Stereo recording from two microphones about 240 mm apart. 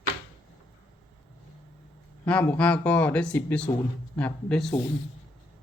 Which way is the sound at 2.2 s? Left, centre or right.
Centre.